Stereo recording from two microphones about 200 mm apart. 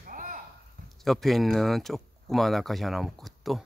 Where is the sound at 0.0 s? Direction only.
45° right (ahead or behind).